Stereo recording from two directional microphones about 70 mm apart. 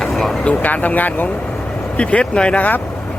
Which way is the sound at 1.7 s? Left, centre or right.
Centre.